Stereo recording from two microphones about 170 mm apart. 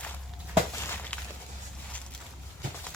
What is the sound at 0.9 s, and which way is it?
Walk, 10° left (ahead or behind).